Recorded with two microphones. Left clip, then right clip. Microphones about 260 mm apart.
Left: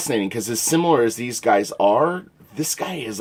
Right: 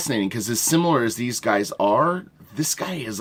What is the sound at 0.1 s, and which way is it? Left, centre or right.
Speech, right.